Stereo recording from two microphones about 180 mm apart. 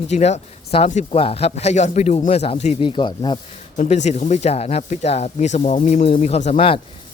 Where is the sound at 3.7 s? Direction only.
40° left (ahead or behind).